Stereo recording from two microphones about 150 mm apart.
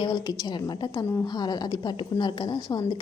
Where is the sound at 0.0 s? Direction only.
30° left (ahead or behind).